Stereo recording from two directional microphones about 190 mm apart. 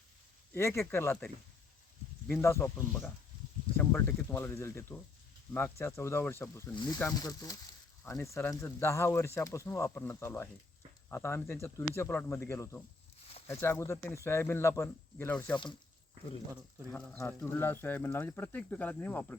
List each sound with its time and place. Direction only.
0.5 s speech: 15° left (ahead or behind)
16.9 s speech: 10° left (ahead or behind)